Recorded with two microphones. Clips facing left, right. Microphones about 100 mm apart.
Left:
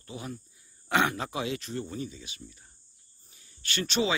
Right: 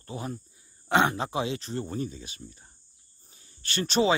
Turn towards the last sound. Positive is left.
turn(degrees=-35)  # may be behind; listen again after turning